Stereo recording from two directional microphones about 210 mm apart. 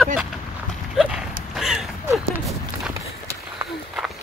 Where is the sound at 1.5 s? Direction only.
Centre (ahead or behind).